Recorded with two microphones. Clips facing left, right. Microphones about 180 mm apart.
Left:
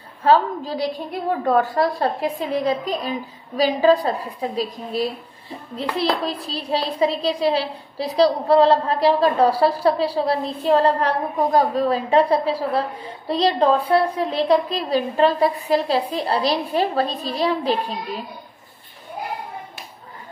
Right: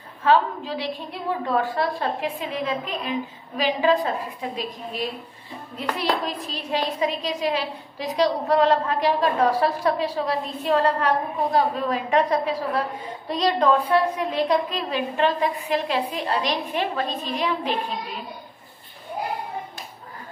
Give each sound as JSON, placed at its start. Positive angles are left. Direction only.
{"t": 0.2, "sound": "a woman's voice", "side_deg": 40}